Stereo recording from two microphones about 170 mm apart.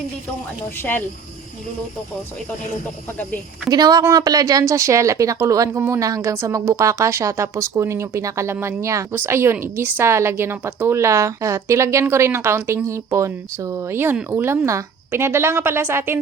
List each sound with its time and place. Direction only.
0.8 s speech: 10° left (ahead or behind)
3.7 s a woman's voice: 25° right (ahead or behind)